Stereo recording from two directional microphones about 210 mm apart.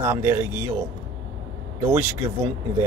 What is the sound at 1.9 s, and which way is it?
Speech, 10° right (ahead or behind).